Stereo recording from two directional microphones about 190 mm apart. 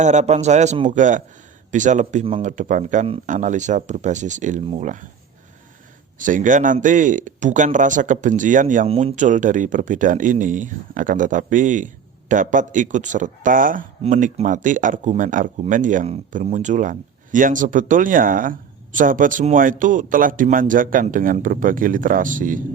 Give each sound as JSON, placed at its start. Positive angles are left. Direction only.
{"t": 0.0, "sound": "speech", "side_deg": -40}
{"t": 6.1, "sound": "speech", "side_deg": -45}